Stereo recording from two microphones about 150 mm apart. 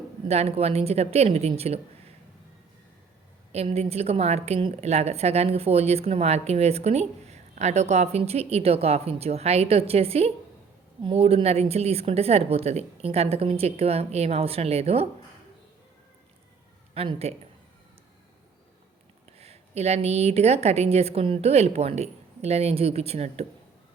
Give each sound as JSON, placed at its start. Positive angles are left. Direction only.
{"t": 0.3, "sound": "a woman's voice", "side_deg": -45}
{"t": 3.5, "sound": "a woman's voice", "side_deg": -45}
{"t": 16.9, "sound": "a woman's voice", "side_deg": -40}
{"t": 19.4, "sound": "a woman's voice", "side_deg": -45}